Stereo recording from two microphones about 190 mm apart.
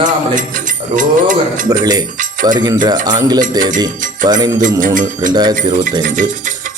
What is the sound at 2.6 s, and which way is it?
Speech, 20° right (ahead or behind).